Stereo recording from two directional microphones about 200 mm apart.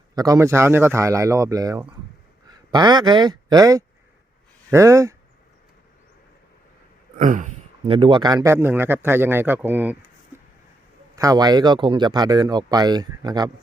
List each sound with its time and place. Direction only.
0.2 s a man's voice: 15° right (ahead or behind)
7.2 s speech: 40° right (ahead or behind)
7.9 s a man's voice: 25° right (ahead or behind); by 10.0 s 10° right (ahead or behind)
11.1 s speech: 15° right (ahead or behind)